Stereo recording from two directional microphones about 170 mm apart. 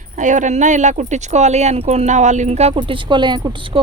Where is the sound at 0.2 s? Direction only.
45° right (ahead or behind).